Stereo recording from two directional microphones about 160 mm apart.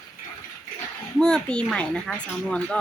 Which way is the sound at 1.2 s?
5° left (ahead or behind).